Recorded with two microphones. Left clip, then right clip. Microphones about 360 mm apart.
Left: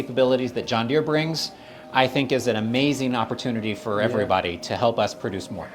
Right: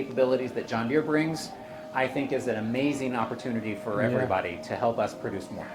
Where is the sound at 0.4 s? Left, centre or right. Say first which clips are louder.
Left 6 dB; left.